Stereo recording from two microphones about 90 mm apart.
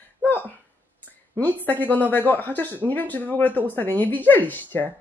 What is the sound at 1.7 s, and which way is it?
Speech, 20° left (ahead or behind).